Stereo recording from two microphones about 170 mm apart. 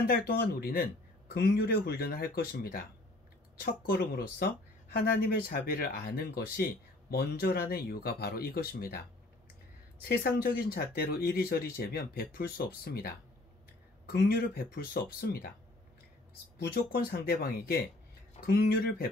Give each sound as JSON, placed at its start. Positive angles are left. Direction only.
{"t": 0.0, "sound": "speech", "side_deg": 65}
{"t": 10.0, "sound": "speech", "side_deg": 65}
{"t": 16.5, "sound": "speech", "side_deg": 65}